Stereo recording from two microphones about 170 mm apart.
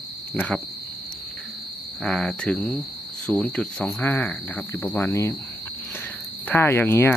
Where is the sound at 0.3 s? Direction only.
10° left (ahead or behind).